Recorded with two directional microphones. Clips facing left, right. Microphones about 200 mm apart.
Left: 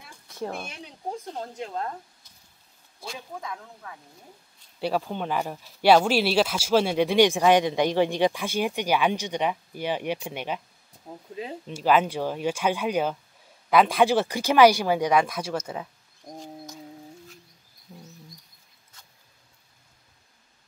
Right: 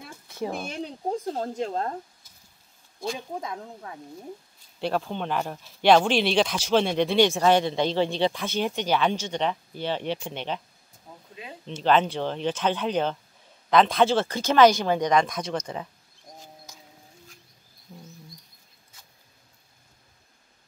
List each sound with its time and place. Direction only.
0.3 s speech: centre (ahead or behind)
0.7 s speech: 35° right (ahead or behind)
3.3 s speech: 25° right (ahead or behind)
4.7 s speech: 5° left (ahead or behind)
11.6 s speech: 10° left (ahead or behind)